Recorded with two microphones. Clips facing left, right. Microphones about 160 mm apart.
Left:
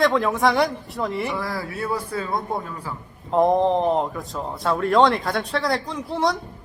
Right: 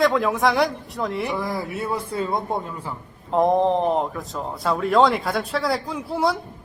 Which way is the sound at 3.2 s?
Centre (ahead or behind).